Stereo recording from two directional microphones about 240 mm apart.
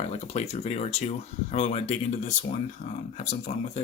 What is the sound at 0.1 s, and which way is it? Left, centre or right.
Speech, left.